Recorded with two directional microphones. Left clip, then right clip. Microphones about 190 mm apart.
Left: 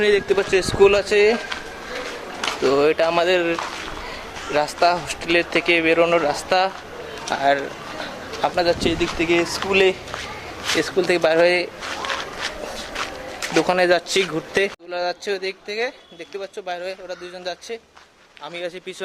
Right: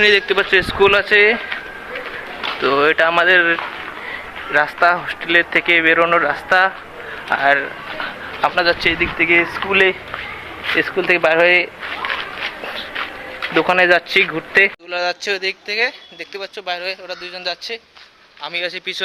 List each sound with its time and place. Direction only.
0.0 s speech: centre (ahead or behind)
2.7 s speech: 10° left (ahead or behind)
13.5 s speech: 5° left (ahead or behind)